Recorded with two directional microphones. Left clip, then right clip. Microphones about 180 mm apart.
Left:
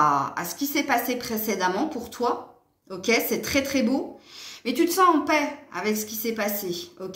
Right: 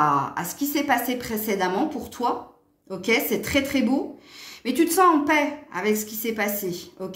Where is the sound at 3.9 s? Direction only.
45° right (ahead or behind).